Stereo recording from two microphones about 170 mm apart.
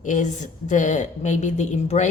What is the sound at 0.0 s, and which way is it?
A woman's voice, 45° left (ahead or behind).